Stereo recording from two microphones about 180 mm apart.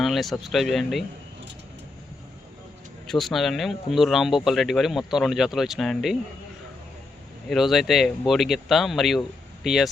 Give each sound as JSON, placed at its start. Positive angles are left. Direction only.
{"t": 0.0, "sound": "speech", "side_deg": 0}
{"t": 3.1, "sound": "speech", "side_deg": 0}
{"t": 7.4, "sound": "speech", "side_deg": 0}